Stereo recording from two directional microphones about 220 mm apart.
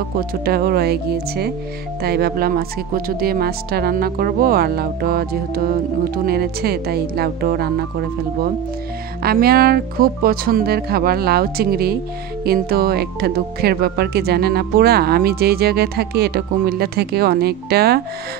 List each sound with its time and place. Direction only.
0.5 s speech: 45° right (ahead or behind)
9.2 s speech: 45° right (ahead or behind)